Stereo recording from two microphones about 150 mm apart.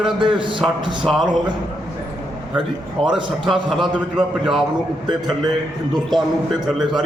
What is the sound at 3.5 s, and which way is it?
A man's voice, centre (ahead or behind).